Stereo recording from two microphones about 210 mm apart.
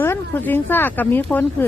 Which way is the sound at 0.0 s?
10° left (ahead or behind).